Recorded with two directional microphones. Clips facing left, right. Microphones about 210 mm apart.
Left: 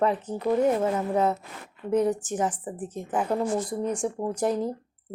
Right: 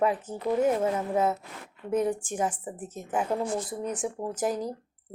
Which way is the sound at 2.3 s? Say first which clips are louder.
Left 2 dB; 25° right (ahead or behind).